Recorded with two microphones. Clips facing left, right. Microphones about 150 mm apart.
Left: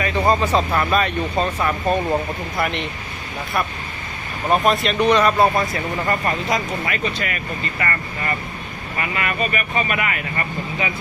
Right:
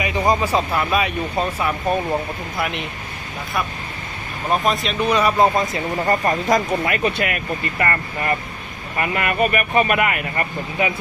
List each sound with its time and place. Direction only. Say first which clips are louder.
0.0 s speech: left 1 dB; 10° right (ahead or behind)
4.5 s speech: left 3 dB; centre (ahead or behind)
6.1 s speech: right 4 dB; 40° right (ahead or behind)